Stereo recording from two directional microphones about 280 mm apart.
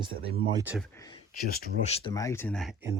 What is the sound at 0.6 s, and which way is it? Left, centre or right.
Speech, centre.